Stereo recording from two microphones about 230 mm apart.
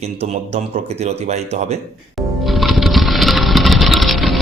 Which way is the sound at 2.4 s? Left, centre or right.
Centre.